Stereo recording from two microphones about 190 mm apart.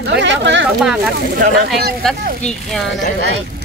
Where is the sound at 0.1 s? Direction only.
70° right (ahead or behind).